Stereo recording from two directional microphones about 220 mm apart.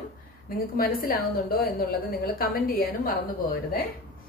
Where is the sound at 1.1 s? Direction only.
40° left (ahead or behind).